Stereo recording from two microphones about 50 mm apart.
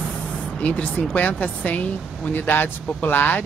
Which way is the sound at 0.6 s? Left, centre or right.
Left.